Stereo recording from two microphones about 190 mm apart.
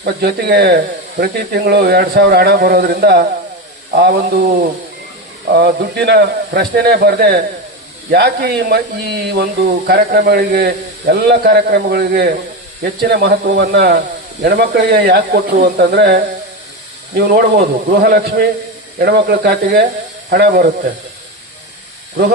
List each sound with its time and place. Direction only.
0.0 s a man's voice: 60° right (ahead or behind)
17.8 s a man's voice: 60° right (ahead or behind)